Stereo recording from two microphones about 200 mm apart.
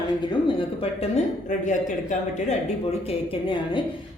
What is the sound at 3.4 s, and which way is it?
Speech, 25° left (ahead or behind).